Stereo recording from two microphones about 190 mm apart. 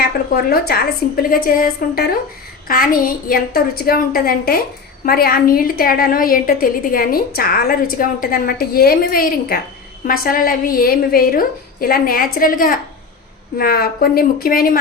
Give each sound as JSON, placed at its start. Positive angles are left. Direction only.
{"t": 0.5, "sound": "a woman's voice", "side_deg": 50}